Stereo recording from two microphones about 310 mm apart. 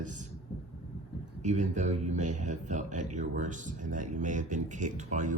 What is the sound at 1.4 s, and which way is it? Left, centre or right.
Speech, right.